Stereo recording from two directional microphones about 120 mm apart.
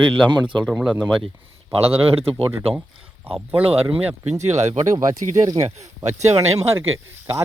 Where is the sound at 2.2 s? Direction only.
55° right (ahead or behind); by 4.7 s 70° right (ahead or behind).